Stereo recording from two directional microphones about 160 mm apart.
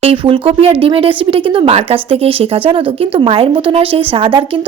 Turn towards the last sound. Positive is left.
turn(degrees=-35)  # may be behind; listen again after turning